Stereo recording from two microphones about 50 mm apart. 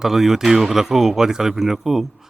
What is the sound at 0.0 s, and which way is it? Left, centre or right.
A man's voice, centre.